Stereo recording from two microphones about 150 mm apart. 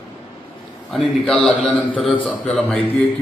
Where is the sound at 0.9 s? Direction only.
Centre (ahead or behind).